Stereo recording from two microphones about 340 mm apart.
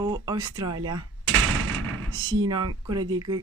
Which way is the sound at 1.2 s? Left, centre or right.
Right.